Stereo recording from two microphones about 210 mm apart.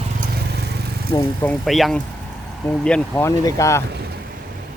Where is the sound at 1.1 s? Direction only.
10° left (ahead or behind).